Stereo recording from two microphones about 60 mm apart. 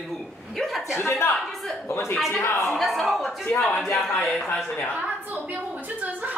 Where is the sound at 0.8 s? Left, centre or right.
Left.